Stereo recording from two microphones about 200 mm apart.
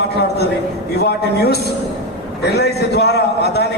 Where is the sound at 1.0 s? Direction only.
55° left (ahead or behind).